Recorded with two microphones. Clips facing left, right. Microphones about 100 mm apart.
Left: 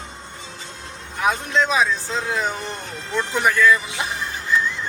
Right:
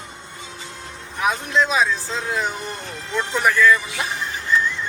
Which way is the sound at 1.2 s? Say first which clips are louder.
Even; centre (ahead or behind).